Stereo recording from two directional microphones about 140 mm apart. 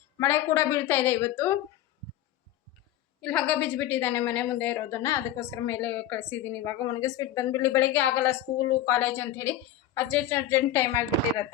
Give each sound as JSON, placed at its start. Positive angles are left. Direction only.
{"t": 0.2, "sound": "a woman's voice", "side_deg": 15}
{"t": 3.2, "sound": "a woman's voice", "side_deg": 5}
{"t": 6.8, "sound": "a woman's voice", "side_deg": 25}